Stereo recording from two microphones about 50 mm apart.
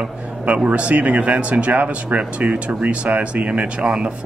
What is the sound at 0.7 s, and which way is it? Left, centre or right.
Speech, right.